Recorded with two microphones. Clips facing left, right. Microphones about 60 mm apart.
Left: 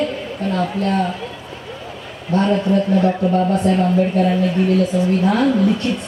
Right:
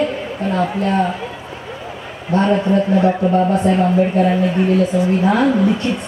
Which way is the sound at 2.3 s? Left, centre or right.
Centre.